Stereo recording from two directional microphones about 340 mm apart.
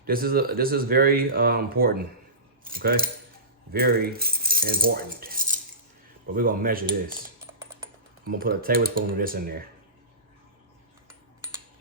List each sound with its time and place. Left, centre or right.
0.0 s speech: right
8.4 s speech: right